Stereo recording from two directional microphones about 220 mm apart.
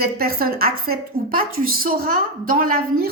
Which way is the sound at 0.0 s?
45° right (ahead or behind).